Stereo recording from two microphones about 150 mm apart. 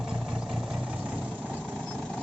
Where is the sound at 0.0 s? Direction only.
Centre (ahead or behind).